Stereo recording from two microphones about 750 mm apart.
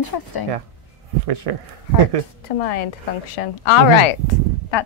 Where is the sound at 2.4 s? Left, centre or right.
Left.